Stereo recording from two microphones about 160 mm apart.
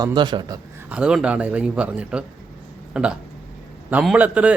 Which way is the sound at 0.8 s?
5° right (ahead or behind).